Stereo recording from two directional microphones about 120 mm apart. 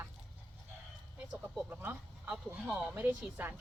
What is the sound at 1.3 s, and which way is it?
Speech, 10° right (ahead or behind).